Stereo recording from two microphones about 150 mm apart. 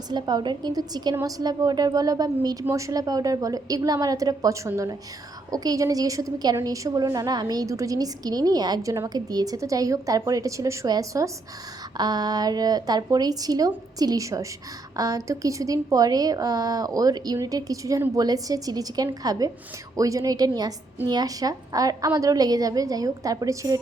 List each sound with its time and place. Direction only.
0.1 s a woman's voice: 30° right (ahead or behind)